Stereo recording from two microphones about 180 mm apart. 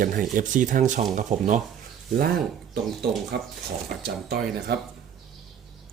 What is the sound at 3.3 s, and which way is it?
Speech, 65° right (ahead or behind).